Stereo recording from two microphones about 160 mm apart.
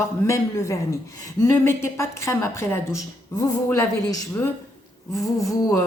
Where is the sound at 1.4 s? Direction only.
15° left (ahead or behind).